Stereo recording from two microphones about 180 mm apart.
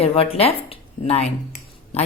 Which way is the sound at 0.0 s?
35° left (ahead or behind).